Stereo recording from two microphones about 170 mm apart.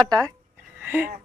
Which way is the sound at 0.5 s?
10° right (ahead or behind).